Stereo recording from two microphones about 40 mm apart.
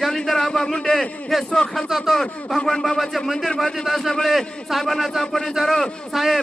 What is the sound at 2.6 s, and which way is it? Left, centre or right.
A man's voice, centre.